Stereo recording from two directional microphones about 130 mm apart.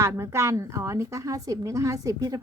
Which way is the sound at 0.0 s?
20° right (ahead or behind).